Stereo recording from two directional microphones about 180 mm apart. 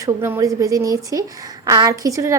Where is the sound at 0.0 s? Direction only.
15° right (ahead or behind).